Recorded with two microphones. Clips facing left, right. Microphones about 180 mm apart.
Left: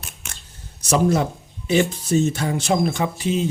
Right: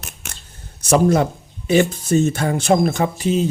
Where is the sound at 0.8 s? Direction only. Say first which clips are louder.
Right 4 dB; 55° right (ahead or behind).